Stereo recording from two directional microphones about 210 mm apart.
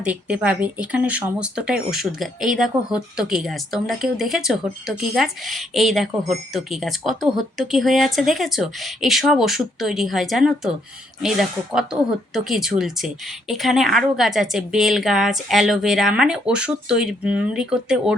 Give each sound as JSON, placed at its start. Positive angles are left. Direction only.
{"t": 0.0, "sound": "speech", "side_deg": -5}